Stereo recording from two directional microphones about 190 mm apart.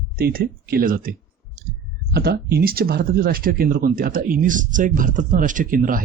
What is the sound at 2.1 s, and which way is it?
Speech, 55° right (ahead or behind).